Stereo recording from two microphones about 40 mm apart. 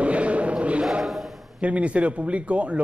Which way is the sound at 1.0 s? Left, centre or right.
Centre.